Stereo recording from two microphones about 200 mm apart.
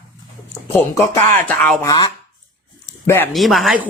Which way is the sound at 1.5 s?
5° left (ahead or behind).